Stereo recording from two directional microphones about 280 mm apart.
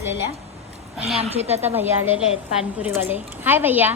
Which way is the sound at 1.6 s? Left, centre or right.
Centre.